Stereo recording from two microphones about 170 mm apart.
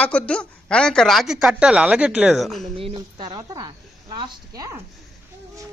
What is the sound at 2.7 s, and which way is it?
A woman's voice, 30° right (ahead or behind).